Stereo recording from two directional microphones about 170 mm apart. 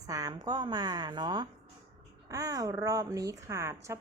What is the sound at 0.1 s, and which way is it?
A woman's voice, 20° right (ahead or behind).